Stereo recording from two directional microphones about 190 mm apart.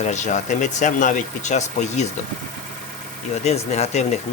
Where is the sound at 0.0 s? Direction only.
40° left (ahead or behind).